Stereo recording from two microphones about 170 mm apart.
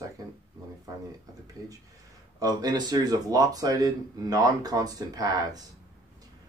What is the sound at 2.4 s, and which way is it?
Speech, 25° right (ahead or behind).